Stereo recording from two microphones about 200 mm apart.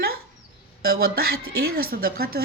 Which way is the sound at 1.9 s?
50° right (ahead or behind).